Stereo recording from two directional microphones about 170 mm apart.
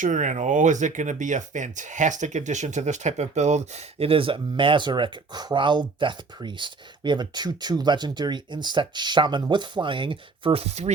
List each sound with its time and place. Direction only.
0.0 s speech: 45° right (ahead or behind)